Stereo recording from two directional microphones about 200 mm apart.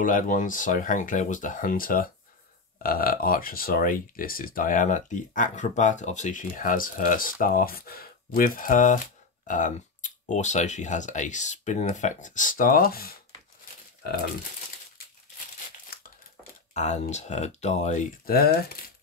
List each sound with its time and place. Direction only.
0.0 s speech: 40° left (ahead or behind)
15.9 s crumpling: 50° left (ahead or behind)
16.7 s speech: 35° left (ahead or behind)